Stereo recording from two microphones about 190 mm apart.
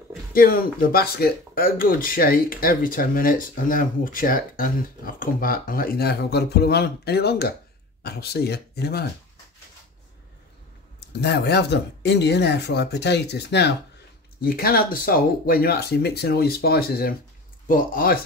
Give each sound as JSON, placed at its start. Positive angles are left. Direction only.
{"t": 0.3, "sound": "speech", "side_deg": 50}
{"t": 11.0, "sound": "speech", "side_deg": 60}
{"t": 14.4, "sound": "speech", "side_deg": 50}